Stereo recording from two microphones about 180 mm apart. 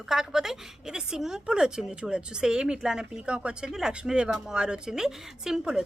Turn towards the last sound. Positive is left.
turn(degrees=-5)  # may be behind; listen again after turning